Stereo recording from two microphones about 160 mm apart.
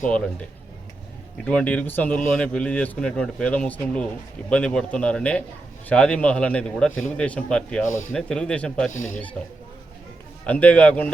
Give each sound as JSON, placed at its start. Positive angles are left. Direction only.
{"t": 1.5, "sound": "speech", "side_deg": 10}
{"t": 8.9, "sound": "speech", "side_deg": 50}
{"t": 10.4, "sound": "speech", "side_deg": 10}